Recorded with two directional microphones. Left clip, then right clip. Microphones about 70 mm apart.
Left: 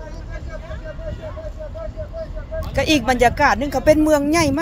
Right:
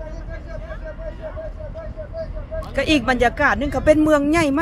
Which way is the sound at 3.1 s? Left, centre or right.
Centre.